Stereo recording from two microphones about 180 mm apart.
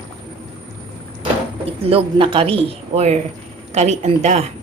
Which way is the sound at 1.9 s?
30° right (ahead or behind).